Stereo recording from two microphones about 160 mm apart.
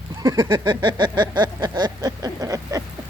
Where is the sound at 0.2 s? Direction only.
25° right (ahead or behind).